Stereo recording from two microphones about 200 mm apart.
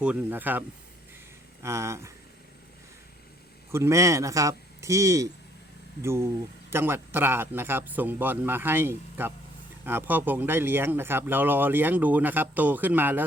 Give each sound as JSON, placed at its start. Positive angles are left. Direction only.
{"t": 0.0, "sound": "speech", "side_deg": -10}
{"t": 1.6, "sound": "speech", "side_deg": -15}
{"t": 3.7, "sound": "speech", "side_deg": -15}